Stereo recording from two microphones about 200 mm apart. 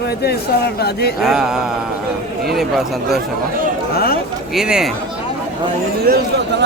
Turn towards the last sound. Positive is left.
turn(degrees=-55)  # may be behind; listen again after turning